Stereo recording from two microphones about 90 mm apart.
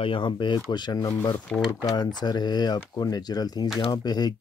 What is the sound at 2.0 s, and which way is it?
Speech, 50° left (ahead or behind).